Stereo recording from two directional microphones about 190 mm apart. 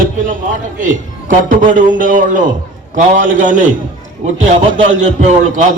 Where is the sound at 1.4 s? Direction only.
45° right (ahead or behind).